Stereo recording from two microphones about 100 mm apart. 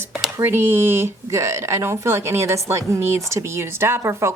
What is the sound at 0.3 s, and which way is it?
A woman's voice, 25° right (ahead or behind).